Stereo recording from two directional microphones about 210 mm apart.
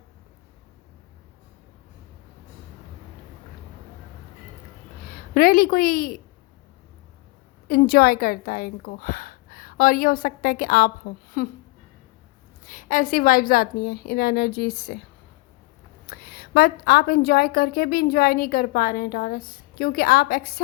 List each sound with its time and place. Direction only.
5.1 s a woman's voice: 45° left (ahead or behind)
7.7 s a woman's voice: 45° left (ahead or behind)
12.6 s a woman's voice: 40° left (ahead or behind)
16.0 s a woman's voice: 45° left (ahead or behind)